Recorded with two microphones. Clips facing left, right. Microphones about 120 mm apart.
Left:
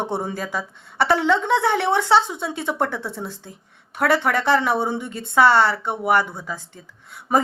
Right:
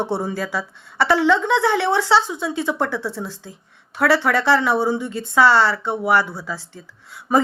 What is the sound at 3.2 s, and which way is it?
A woman's voice, 55° left (ahead or behind).